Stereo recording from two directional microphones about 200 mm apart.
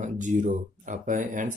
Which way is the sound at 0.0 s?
40° right (ahead or behind).